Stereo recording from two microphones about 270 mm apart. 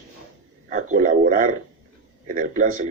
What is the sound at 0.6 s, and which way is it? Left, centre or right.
A man's voice, right.